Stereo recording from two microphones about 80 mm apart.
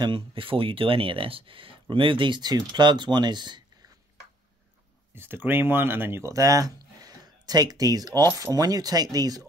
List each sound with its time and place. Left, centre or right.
0.0 s speech: right
5.1 s speech: right
6.3 s speech: right